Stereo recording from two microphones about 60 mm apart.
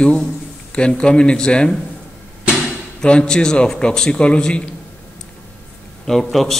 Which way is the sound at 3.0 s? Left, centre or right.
Centre.